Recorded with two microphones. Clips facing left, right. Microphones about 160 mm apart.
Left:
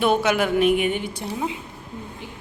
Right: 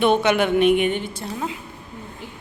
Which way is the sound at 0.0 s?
5° left (ahead or behind).